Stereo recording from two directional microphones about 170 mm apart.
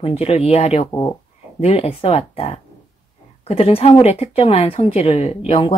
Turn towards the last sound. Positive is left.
turn(degrees=30)  # may be behind; listen again after turning